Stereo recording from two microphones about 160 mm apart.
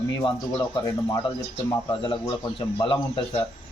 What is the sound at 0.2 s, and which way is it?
A man's voice, 25° left (ahead or behind).